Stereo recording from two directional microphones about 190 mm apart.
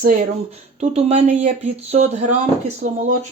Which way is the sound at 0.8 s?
35° right (ahead or behind).